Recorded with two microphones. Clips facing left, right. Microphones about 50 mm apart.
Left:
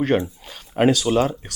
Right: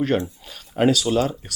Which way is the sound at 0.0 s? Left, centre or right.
Centre.